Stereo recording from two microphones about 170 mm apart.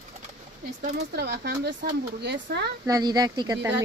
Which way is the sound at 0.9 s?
80° right.